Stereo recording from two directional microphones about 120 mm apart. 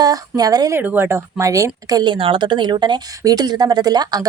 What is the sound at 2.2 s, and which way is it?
A woman's voice, 45° right (ahead or behind).